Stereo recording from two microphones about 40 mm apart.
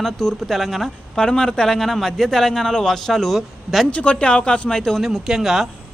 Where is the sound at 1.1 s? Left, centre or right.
Centre.